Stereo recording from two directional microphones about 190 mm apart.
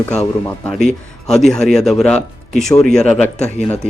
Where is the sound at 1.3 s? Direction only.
5° left (ahead or behind).